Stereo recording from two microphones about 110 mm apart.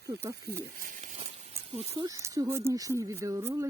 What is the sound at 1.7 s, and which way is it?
Speech, 70° right (ahead or behind).